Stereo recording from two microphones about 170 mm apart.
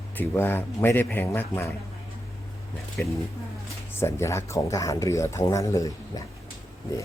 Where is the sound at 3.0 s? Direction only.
10° left (ahead or behind).